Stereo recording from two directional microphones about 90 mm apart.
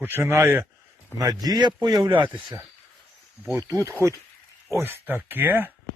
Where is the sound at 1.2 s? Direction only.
45° right (ahead or behind).